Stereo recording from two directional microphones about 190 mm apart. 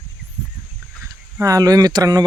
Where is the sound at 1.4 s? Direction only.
20° right (ahead or behind).